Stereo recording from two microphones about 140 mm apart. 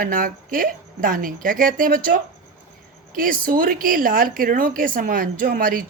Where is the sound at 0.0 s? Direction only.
80° right.